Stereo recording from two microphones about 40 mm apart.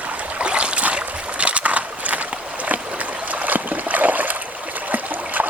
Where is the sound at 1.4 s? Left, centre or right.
Right.